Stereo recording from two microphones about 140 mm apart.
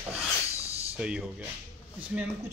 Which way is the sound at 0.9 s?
5° right (ahead or behind).